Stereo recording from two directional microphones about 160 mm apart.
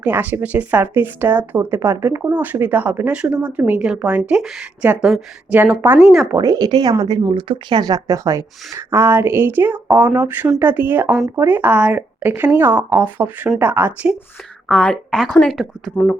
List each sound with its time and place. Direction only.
0.0 s a woman's voice: 10° right (ahead or behind)
6.3 s speech: 20° right (ahead or behind)
14.7 s a woman's voice: 5° left (ahead or behind)